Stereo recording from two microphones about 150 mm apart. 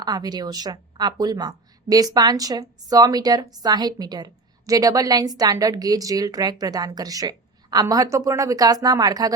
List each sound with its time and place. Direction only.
0.0 s speech: 25° right (ahead or behind)